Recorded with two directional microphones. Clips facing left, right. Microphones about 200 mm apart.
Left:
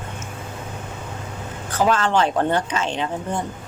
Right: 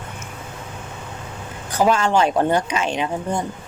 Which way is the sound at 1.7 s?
15° right (ahead or behind).